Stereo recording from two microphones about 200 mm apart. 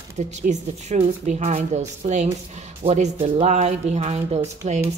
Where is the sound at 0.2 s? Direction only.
35° right (ahead or behind).